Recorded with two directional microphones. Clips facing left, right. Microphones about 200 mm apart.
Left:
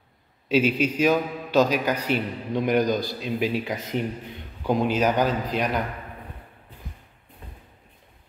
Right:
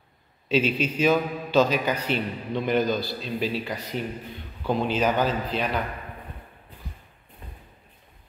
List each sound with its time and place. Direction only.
0.5 s a man's voice: 10° left (ahead or behind)